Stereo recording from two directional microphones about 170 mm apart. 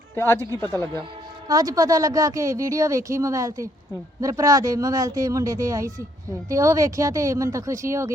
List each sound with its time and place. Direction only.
0.2 s speech: 15° left (ahead or behind)
1.5 s a woman's voice: 20° right (ahead or behind)